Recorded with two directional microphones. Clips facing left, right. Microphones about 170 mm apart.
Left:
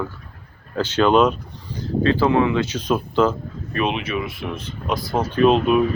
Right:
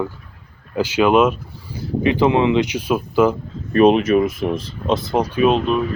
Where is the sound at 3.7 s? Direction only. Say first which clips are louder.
Right 11 dB; 40° right (ahead or behind).